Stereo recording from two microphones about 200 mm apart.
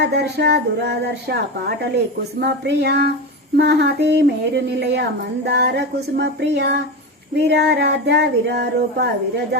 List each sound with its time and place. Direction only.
0.0 s speech: 55° right (ahead or behind)